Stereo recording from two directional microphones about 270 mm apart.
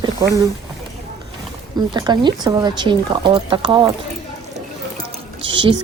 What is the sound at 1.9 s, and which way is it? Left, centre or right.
Speech, centre.